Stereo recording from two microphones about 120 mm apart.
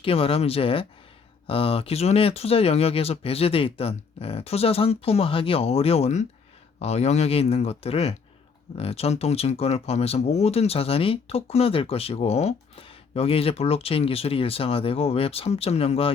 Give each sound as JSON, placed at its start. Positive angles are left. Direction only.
{"t": 0.0, "sound": "speech", "side_deg": 50}